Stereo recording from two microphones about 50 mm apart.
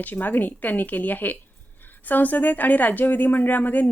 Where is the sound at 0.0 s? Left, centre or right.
Left.